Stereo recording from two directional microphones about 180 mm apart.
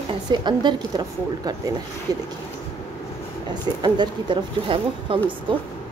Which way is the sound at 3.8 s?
25° right (ahead or behind).